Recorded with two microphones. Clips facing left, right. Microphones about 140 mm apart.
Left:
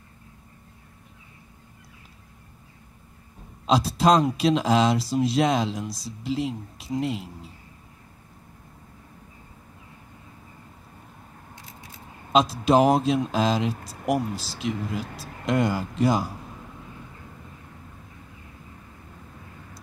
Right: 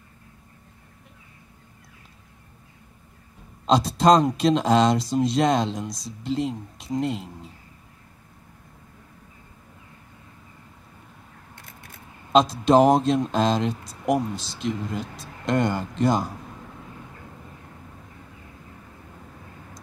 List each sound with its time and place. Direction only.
3.6 s speech: 5° left (ahead or behind)
11.5 s a sound: 55° right (ahead or behind)
12.3 s speech: 5° left (ahead or behind)